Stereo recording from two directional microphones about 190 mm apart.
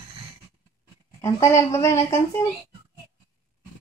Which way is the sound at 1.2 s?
15° left (ahead or behind).